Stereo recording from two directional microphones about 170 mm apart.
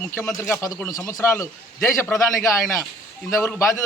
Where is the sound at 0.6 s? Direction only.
20° left (ahead or behind).